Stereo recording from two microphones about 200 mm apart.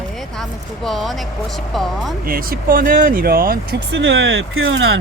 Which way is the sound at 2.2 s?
45° right (ahead or behind).